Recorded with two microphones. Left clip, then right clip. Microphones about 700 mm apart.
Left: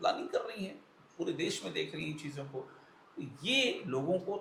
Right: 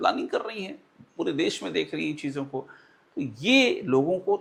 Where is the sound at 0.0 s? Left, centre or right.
Right.